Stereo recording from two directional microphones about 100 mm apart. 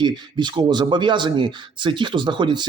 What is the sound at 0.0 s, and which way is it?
Speech, 50° right (ahead or behind).